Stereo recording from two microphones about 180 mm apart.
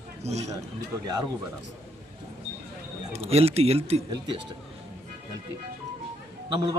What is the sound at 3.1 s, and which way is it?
Speech, 35° right (ahead or behind).